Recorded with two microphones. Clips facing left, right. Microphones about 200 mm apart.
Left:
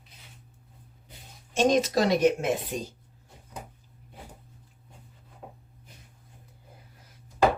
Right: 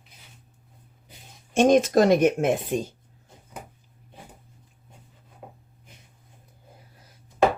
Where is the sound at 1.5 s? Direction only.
50° right (ahead or behind).